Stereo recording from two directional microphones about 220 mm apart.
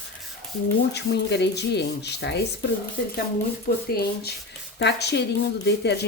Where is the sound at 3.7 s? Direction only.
45° left (ahead or behind).